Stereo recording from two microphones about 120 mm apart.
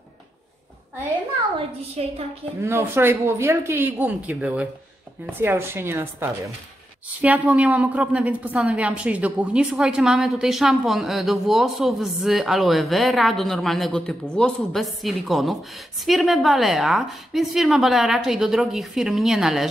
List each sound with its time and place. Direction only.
2.0 s a woman's voice: 60° right (ahead or behind)
2.6 s a woman's voice: 20° right (ahead or behind); by 19.7 s 5° right (ahead or behind)